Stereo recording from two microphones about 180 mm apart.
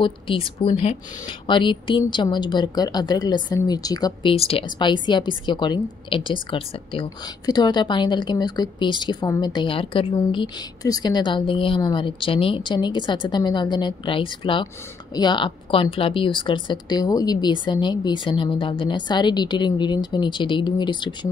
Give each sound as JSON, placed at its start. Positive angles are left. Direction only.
{"t": 0.0, "sound": "a woman's voice", "side_deg": 30}